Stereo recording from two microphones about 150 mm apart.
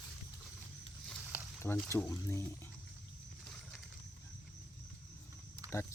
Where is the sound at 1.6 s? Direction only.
15° left (ahead or behind).